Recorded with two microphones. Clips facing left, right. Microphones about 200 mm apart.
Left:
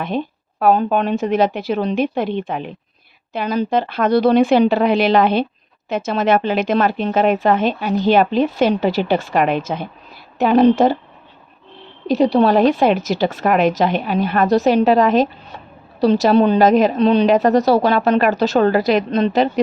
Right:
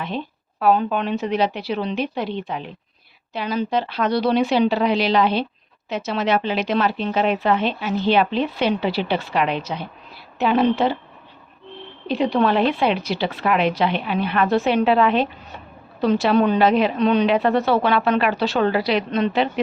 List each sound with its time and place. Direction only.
0.0 s a woman's voice: 50° left (ahead or behind)
12.0 s a woman's voice: 40° left (ahead or behind)